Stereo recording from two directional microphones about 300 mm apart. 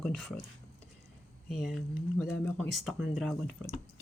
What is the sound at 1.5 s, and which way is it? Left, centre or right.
Speech, centre.